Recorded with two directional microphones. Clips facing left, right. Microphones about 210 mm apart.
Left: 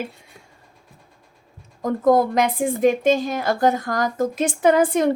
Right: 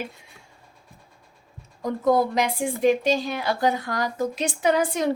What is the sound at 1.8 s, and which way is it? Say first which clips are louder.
A woman's voice: left 4 dB; 50° left (ahead or behind).